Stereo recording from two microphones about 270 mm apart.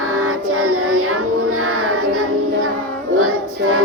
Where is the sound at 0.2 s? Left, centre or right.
Right.